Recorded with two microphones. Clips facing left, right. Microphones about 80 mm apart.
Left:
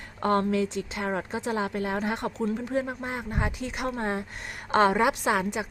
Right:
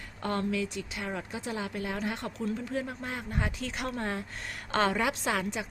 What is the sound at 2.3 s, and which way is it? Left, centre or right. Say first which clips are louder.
Speech: left 5 dB; left.